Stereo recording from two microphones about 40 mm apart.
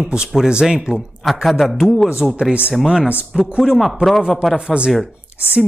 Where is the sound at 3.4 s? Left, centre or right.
Centre.